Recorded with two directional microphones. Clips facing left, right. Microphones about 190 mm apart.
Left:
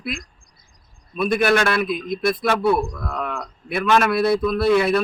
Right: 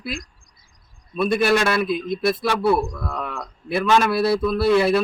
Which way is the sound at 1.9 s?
30° right (ahead or behind).